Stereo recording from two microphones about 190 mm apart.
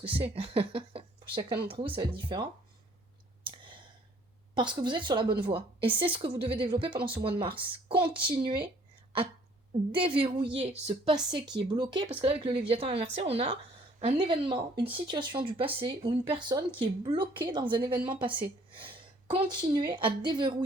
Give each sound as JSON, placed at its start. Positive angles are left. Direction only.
{"t": 0.0, "sound": "speech", "side_deg": -30}
{"t": 3.4, "sound": "clicking", "side_deg": -25}
{"t": 4.5, "sound": "speech", "side_deg": -25}
{"t": 9.9, "sound": "speech", "side_deg": -25}
{"t": 11.1, "sound": "speech", "side_deg": -20}